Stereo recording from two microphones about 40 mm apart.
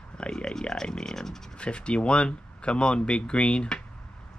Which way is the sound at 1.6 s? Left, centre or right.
Left.